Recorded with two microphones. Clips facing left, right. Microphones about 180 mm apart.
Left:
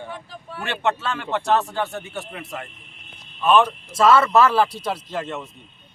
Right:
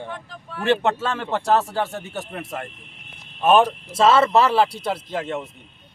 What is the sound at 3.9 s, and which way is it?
Speech, 25° right (ahead or behind).